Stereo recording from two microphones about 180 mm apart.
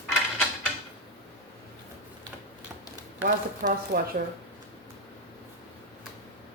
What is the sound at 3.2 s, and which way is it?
Speech, 50° right (ahead or behind).